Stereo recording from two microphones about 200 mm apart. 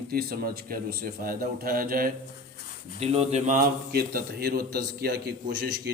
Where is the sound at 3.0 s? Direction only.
30° right (ahead or behind).